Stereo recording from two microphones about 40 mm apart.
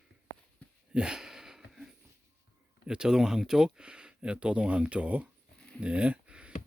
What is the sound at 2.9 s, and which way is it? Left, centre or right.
Speech, centre.